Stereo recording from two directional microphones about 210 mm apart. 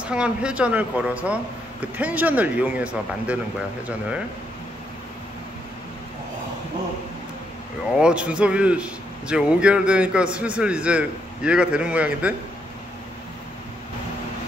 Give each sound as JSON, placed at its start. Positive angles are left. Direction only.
{"t": 0.0, "sound": "speech", "side_deg": -5}
{"t": 8.0, "sound": "a man's voice", "side_deg": -5}